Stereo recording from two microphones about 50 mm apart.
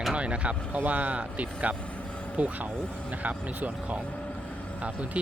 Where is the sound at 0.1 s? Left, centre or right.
Right.